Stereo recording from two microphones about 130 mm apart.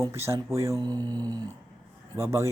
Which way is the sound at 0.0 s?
20° right (ahead or behind).